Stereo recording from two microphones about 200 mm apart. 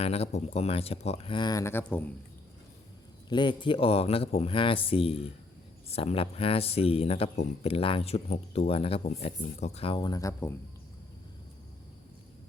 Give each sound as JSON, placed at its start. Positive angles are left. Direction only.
{"t": 0.0, "sound": "speech", "side_deg": 30}
{"t": 3.2, "sound": "speech", "side_deg": 25}